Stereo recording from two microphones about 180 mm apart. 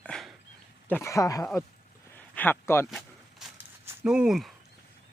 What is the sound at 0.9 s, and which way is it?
Speech, 15° left (ahead or behind).